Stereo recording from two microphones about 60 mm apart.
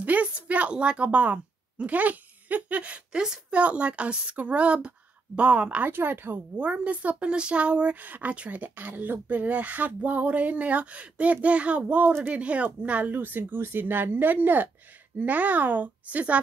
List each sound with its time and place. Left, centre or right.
0.0 s a woman's voice: right
6.5 s speech: right
12.1 s speech: right
12.4 s speech: right